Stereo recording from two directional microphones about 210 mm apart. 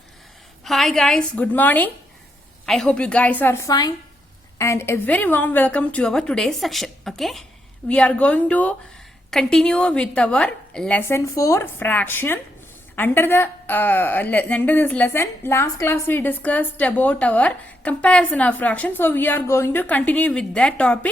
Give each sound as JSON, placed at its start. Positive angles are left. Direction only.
{"t": 0.6, "sound": "a woman's voice", "side_deg": 0}